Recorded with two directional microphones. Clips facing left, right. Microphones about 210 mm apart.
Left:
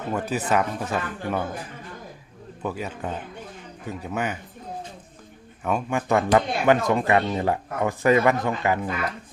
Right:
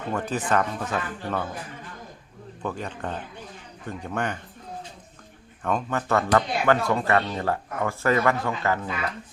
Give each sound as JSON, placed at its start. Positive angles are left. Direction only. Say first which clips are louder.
{"t": 0.1, "sound": "speech", "louder": "left 1 dB", "side_deg": 10}
{"t": 2.6, "sound": "speech", "louder": "left 1 dB", "side_deg": 10}
{"t": 5.6, "sound": "speech", "louder": "left 2 dB", "side_deg": 10}